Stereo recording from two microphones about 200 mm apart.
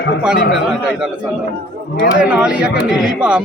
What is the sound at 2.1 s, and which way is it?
Speech, 5° right (ahead or behind).